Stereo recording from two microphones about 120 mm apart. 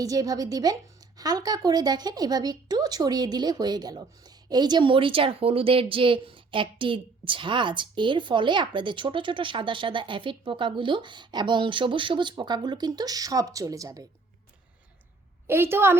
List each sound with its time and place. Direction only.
0.0 s a woman's voice: 30° right (ahead or behind)
15.4 s a woman's voice: 20° right (ahead or behind)